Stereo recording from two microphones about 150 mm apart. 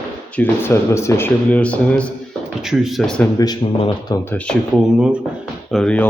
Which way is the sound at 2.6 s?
Centre (ahead or behind).